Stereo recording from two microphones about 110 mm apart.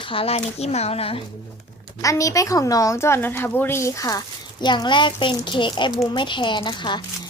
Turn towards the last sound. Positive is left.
turn(degrees=45)  # may be behind; listen again after turning